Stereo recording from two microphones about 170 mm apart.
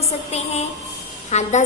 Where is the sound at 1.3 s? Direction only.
40° left (ahead or behind).